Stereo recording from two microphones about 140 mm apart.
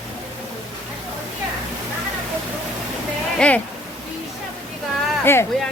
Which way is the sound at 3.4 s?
5° left (ahead or behind).